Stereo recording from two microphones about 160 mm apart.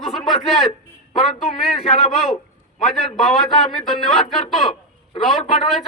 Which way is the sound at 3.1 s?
Centre (ahead or behind).